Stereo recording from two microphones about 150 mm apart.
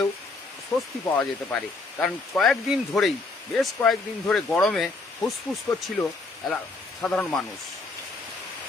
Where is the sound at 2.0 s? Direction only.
5° left (ahead or behind).